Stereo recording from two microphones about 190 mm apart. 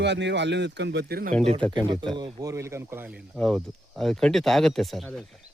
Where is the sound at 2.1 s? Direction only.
20° right (ahead or behind).